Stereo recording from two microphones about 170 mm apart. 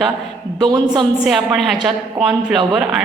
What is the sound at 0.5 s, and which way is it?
Speech, 25° right (ahead or behind).